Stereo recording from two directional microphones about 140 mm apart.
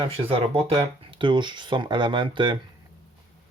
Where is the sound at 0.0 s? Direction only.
40° right (ahead or behind).